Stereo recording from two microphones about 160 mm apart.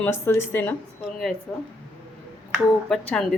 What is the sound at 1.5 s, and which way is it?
Speech, centre (ahead or behind).